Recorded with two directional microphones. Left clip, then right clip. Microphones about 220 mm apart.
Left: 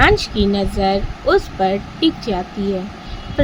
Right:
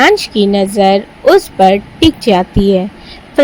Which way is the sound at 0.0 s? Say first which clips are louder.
Right 5 dB; 30° right (ahead or behind).